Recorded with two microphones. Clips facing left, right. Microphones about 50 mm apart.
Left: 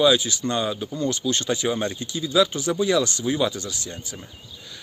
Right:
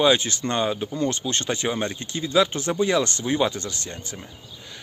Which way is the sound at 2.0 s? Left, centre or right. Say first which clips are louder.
Right 1 dB; right.